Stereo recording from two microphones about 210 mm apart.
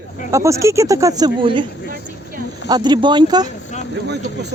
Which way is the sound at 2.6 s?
20° right (ahead or behind).